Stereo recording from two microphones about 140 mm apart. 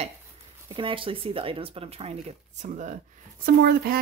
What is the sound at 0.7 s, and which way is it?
Speech, 40° right (ahead or behind).